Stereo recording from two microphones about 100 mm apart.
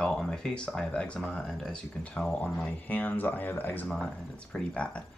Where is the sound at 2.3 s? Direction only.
15° left (ahead or behind).